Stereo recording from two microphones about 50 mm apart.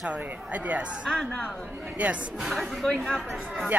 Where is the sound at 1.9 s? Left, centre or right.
Right.